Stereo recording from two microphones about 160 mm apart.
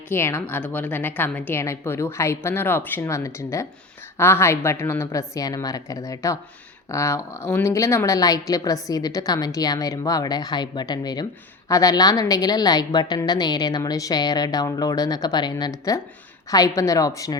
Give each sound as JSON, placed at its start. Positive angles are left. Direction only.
{"t": 0.1, "sound": "a woman's voice", "side_deg": 15}